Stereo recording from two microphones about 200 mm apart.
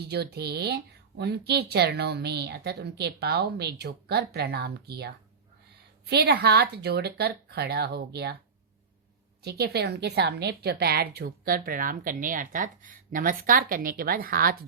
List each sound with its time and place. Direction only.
0.0 s a woman's voice: 55° right (ahead or behind)
9.4 s a woman's voice: 55° right (ahead or behind)